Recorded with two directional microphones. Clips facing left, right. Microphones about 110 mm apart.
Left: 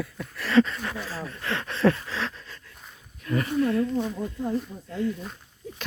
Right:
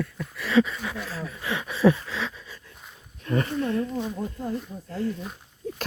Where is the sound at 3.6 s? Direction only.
30° right (ahead or behind).